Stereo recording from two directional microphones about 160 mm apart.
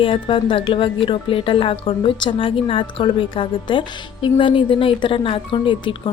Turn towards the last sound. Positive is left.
turn(degrees=30)  # may be behind; listen again after turning